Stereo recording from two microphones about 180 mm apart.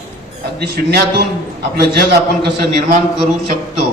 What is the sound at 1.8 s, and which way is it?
Speech, 65° right (ahead or behind).